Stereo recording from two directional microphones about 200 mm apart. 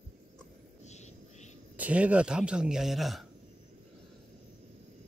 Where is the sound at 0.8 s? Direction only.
35° left (ahead or behind).